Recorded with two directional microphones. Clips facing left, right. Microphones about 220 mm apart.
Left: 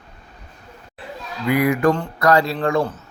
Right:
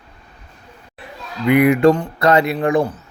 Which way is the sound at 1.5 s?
25° right (ahead or behind).